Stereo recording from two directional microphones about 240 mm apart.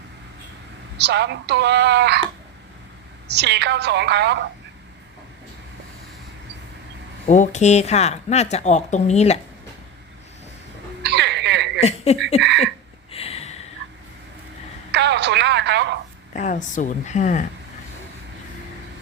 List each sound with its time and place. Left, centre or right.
0.9 s speech: right
3.2 s speech: right
7.3 s speech: left
11.0 s a sound: right
11.8 s speech: left
13.1 s a sound: left
14.9 s speech: right
16.3 s speech: left